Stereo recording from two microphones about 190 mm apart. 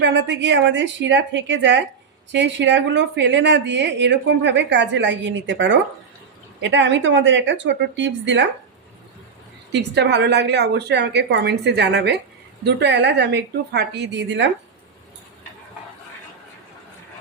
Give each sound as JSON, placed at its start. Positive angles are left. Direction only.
{"t": 0.0, "sound": "a woman's voice", "side_deg": -65}
{"t": 9.7, "sound": "a woman's voice", "side_deg": -65}